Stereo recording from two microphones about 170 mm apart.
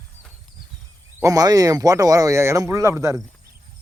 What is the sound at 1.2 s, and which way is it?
Speech, 20° right (ahead or behind).